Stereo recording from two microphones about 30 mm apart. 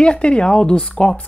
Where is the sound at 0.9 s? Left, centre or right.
Left.